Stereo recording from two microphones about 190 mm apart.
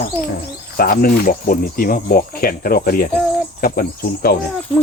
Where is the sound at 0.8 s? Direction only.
50° left (ahead or behind).